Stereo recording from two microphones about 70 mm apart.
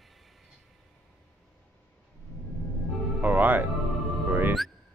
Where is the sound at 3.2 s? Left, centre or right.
Right.